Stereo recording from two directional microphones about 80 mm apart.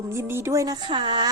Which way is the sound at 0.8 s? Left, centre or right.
Right.